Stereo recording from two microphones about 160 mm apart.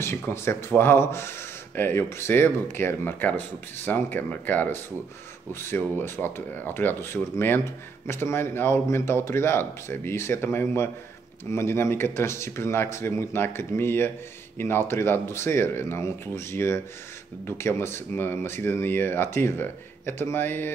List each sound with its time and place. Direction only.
0.0 s speech: 15° left (ahead or behind)